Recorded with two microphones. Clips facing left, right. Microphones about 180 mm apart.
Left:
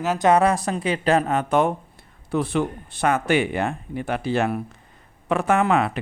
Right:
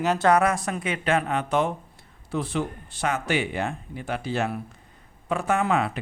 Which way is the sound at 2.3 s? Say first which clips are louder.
Left 5 dB; 60° left (ahead or behind).